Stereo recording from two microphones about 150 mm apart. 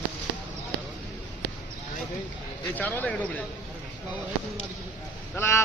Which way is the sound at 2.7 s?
10° left (ahead or behind).